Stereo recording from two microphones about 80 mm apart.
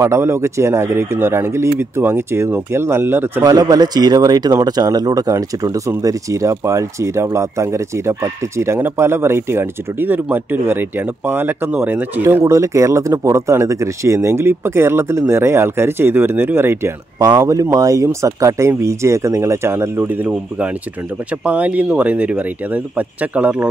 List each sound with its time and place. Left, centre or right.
0.0 s speech: right
3.4 s a man's voice: right
17.4 s speech: right; by 23.7 s centre